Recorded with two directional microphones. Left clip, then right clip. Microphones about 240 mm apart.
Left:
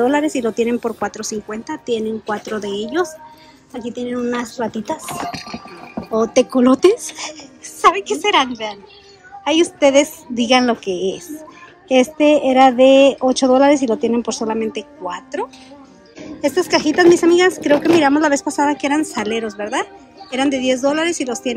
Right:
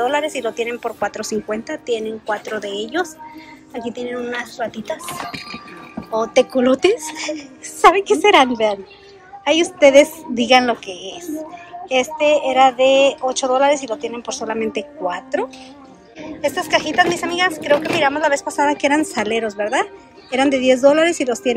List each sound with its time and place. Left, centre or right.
0.0 s a woman's voice: left
16.2 s speech: left